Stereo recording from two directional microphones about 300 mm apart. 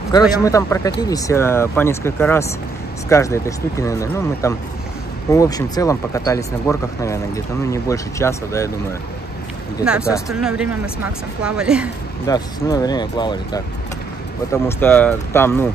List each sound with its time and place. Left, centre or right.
0.4 s speech: centre
9.8 s speech: centre
12.3 s speech: centre